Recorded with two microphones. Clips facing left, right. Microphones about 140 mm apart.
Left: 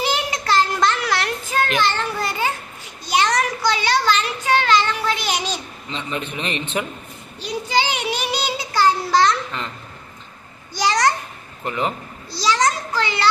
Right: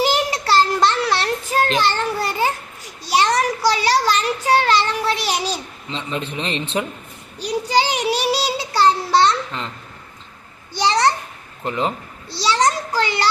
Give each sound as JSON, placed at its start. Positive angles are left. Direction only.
{"t": 0.1, "sound": "a sound", "side_deg": -35}
{"t": 7.3, "sound": "child singing", "side_deg": -40}
{"t": 10.8, "sound": "a child's voice", "side_deg": -30}